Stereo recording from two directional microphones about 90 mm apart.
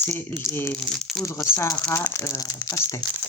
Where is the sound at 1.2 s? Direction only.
30° left (ahead or behind).